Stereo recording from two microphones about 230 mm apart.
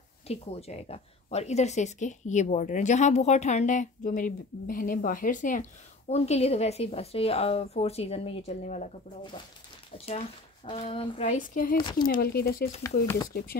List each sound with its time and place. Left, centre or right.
0.3 s a woman's voice: left
13.0 s speech: centre